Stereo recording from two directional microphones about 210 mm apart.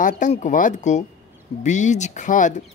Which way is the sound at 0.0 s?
35° left (ahead or behind).